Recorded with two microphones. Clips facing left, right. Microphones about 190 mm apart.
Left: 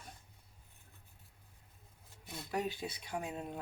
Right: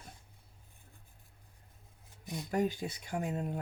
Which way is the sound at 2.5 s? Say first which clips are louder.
Right 5 dB; 45° right (ahead or behind).